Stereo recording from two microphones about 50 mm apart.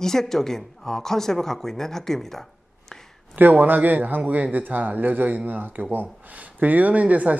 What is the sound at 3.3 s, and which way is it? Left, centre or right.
A man's voice, right.